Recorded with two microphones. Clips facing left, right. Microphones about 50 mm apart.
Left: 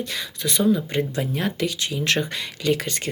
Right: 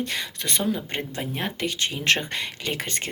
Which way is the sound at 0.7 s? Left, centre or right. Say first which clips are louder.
Left 6 dB; right.